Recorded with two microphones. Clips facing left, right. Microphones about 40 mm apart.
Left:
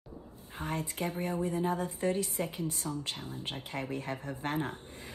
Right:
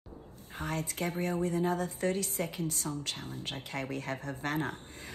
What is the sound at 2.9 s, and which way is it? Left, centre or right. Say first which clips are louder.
Music: even; centre.